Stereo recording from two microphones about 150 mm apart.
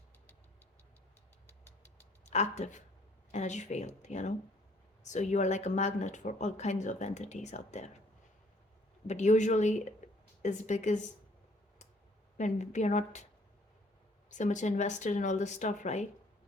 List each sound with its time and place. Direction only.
2.2 s speech: 50° left (ahead or behind)
9.0 s speech: 50° left (ahead or behind)
12.4 s speech: 50° left (ahead or behind)
14.3 s speech: 55° left (ahead or behind)